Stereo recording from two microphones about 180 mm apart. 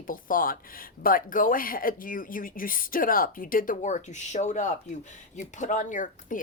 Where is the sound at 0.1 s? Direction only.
50° left (ahead or behind).